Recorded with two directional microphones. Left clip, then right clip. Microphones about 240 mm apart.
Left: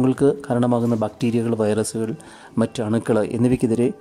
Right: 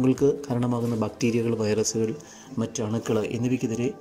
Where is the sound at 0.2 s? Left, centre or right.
Centre.